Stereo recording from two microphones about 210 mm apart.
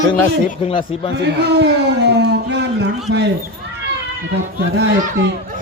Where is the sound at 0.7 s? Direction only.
25° left (ahead or behind).